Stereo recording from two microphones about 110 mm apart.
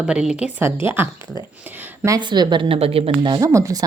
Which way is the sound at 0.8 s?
20° right (ahead or behind).